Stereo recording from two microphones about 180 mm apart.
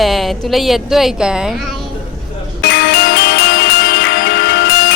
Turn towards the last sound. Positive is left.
turn(degrees=75)  # may be behind; listen again after turning